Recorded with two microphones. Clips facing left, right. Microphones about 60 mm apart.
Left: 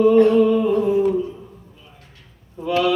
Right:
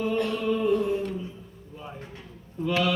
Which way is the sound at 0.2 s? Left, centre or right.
Left.